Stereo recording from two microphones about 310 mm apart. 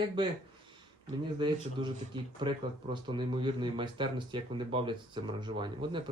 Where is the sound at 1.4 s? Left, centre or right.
Centre.